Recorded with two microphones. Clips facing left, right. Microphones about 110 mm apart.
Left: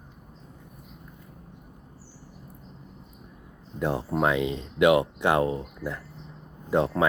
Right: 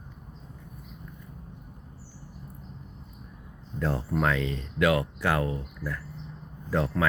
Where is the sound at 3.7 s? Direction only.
20° left (ahead or behind).